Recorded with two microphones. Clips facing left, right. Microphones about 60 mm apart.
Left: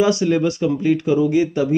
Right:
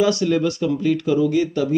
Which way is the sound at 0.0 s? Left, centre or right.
Left.